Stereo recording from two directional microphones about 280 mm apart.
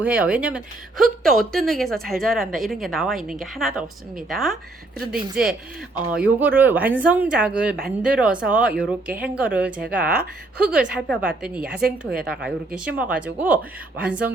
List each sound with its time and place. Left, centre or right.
0.0 s a woman's voice: centre
11.7 s a woman's voice: right
12.2 s a woman's voice: centre